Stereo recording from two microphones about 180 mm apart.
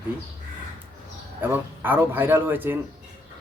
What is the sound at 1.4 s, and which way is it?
Speech, 10° right (ahead or behind).